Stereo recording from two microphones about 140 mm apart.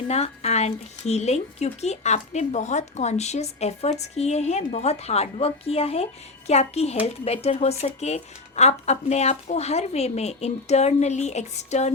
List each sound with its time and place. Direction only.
0.1 s speech: 50° left (ahead or behind)